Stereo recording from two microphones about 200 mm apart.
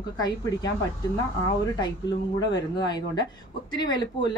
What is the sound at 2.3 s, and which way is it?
Speech, 20° left (ahead or behind).